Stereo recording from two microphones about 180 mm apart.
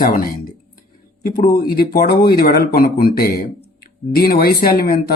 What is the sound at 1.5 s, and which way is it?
Speech, 60° left (ahead or behind).